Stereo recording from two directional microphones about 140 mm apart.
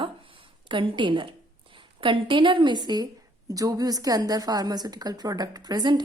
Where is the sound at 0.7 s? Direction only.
35° right (ahead or behind).